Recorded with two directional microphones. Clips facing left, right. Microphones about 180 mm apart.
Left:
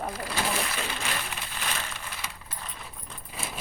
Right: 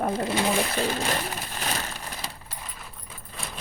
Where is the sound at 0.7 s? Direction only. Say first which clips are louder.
Right 7 dB; 40° right (ahead or behind).